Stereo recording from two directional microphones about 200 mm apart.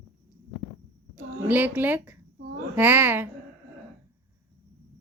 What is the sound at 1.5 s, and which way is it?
Speech, 10° right (ahead or behind).